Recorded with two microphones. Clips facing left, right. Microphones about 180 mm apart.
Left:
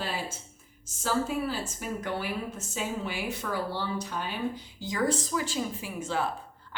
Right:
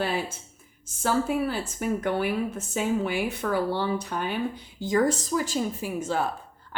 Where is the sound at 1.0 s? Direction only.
55° right (ahead or behind).